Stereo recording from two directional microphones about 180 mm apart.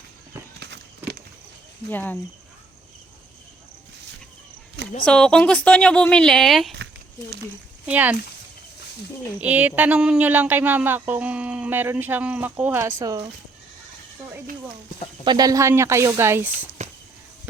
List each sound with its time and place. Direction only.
0.6 s a sound: 70° right (ahead or behind)
1.9 s speech: 10° left (ahead or behind)
5.0 s speech: 5° left (ahead or behind)
7.9 s speech: 10° right (ahead or behind)
9.4 s speech: 10° right (ahead or behind)
15.2 s speech: 25° right (ahead or behind)
16.8 s a sound: 40° right (ahead or behind)